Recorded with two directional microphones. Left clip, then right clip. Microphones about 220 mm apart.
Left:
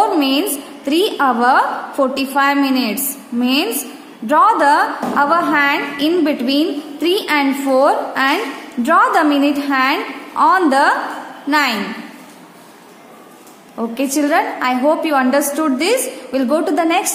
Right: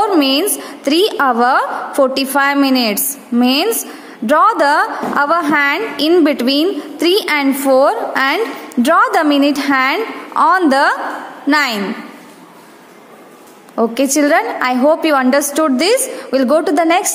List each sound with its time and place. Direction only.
0.0 s a woman's voice: 40° right (ahead or behind)
13.7 s a woman's voice: 40° right (ahead or behind)